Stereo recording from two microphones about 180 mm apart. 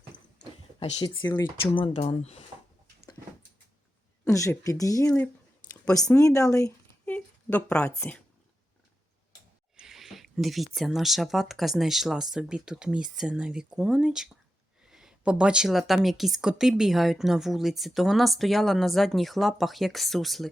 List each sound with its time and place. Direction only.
0.9 s speech: 25° left (ahead or behind)
4.3 s speech: 15° left (ahead or behind)
7.1 s a woman's voice: 10° left (ahead or behind)
9.7 s a woman's voice: centre (ahead or behind)